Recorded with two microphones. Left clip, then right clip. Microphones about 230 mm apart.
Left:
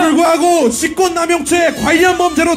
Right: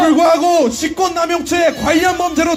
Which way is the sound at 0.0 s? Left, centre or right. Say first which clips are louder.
Even; left.